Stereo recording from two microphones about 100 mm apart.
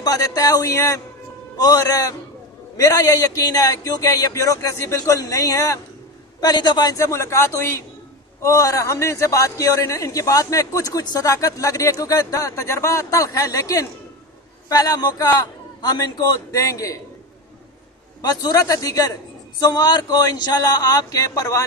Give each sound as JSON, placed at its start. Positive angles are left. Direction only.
{"t": 0.0, "sound": "a man's voice", "side_deg": 40}
{"t": 6.4, "sound": "a man's voice", "side_deg": 45}
{"t": 7.1, "sound": "a man's voice", "side_deg": 30}
{"t": 18.2, "sound": "a man's voice", "side_deg": 40}